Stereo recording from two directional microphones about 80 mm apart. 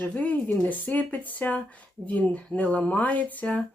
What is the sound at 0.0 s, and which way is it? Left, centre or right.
Speech, left.